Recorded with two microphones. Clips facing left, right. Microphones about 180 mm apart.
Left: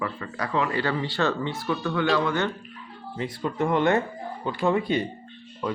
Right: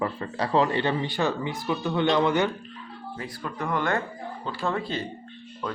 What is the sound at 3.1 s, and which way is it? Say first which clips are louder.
Speech: left 7 dB; 25° left (ahead or behind).